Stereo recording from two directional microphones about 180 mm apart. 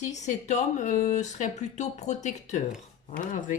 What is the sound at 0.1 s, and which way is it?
A woman's voice, 40° left (ahead or behind).